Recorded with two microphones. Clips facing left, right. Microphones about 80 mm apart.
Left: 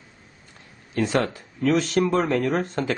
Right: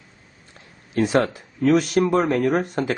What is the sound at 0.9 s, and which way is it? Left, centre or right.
Speech, centre.